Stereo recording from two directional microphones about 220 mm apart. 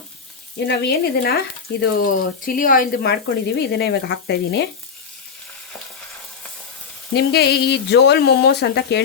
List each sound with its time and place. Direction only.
0.7 s speech: 50° left (ahead or behind)
7.1 s speech: 50° left (ahead or behind)